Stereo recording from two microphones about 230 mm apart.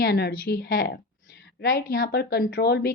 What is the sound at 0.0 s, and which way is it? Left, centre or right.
Speech, left.